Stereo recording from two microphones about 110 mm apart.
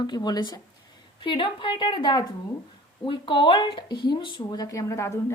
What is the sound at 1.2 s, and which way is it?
A woman's voice, 45° left (ahead or behind).